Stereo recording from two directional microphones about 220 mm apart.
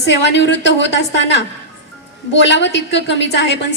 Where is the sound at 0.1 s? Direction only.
50° left (ahead or behind).